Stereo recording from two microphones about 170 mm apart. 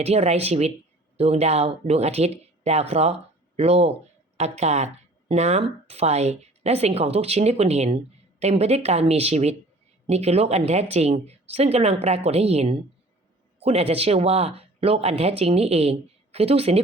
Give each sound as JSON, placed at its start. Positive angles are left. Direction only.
{"t": 0.0, "sound": "speech", "side_deg": -40}